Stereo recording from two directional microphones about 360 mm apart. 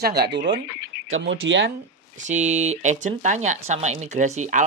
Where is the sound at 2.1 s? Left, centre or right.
Centre.